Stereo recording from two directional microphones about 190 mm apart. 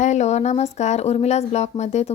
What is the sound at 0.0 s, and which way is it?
Speech, 35° left (ahead or behind).